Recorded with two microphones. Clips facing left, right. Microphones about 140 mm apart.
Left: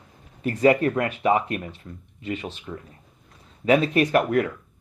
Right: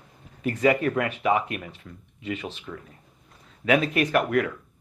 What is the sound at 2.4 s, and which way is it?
Speech, 35° left (ahead or behind).